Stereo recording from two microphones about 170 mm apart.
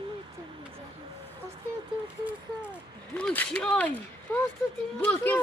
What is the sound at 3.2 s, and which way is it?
Speech, 5° left (ahead or behind).